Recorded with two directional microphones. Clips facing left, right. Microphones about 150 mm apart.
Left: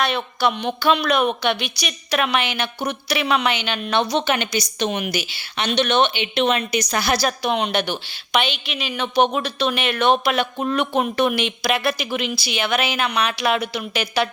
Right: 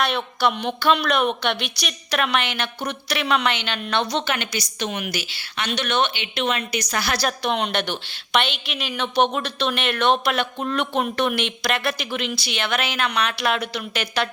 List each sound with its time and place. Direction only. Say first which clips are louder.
0.0 s a woman's voice: left 1 dB; centre (ahead or behind)
4.3 s a woman's voice: left 5 dB; 20° left (ahead or behind)
7.3 s a woman's voice: left 2 dB; 5° left (ahead or behind)